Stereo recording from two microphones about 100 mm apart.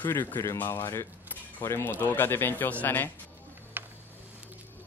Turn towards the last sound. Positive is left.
turn(degrees=-20)  # may be behind; listen again after turning